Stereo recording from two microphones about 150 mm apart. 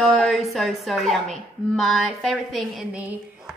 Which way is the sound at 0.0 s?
Centre (ahead or behind).